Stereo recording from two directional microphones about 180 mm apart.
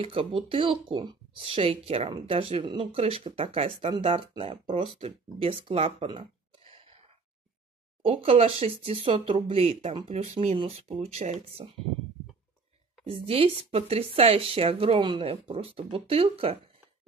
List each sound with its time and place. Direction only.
0.0 s speech: 30° right (ahead or behind)
8.0 s speech: 30° right (ahead or behind)
13.0 s speech: 30° right (ahead or behind)